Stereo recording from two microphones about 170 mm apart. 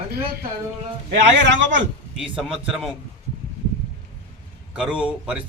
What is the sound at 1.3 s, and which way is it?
Speech, 90° right.